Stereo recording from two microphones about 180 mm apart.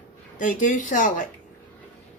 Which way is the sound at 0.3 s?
45° left (ahead or behind).